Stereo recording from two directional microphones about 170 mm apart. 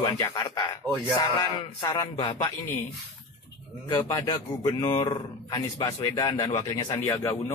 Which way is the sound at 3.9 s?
25° left (ahead or behind).